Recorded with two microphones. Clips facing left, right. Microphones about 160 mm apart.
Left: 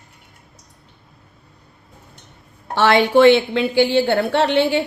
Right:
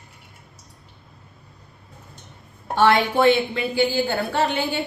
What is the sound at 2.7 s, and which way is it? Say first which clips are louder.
A woman's voice: left 4 dB; 75° left (ahead or behind).